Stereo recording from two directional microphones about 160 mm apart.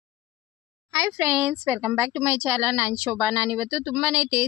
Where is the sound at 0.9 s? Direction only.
15° right (ahead or behind).